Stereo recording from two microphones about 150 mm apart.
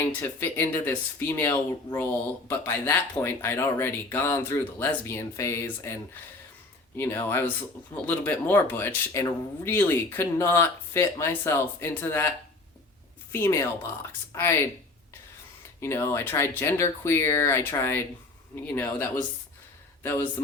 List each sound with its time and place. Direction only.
0.1 s speech: 10° left (ahead or behind)
13.3 s speech: 15° left (ahead or behind)
15.8 s speech: 15° left (ahead or behind)